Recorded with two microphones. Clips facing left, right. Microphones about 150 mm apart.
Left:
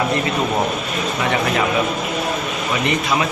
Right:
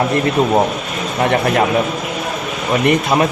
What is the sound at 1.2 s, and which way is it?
Speech, 55° right (ahead or behind).